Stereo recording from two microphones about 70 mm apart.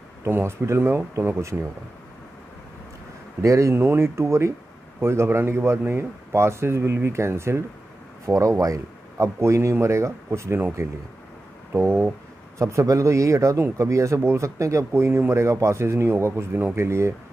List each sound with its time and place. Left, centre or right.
0.2 s speech: right
3.4 s speech: right
8.3 s speech: right
11.7 s a sound: right
12.5 s speech: right